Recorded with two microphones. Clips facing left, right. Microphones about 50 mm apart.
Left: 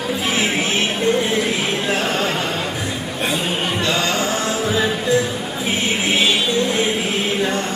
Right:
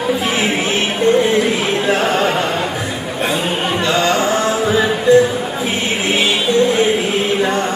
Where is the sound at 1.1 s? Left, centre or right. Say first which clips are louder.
Right 5 dB; centre.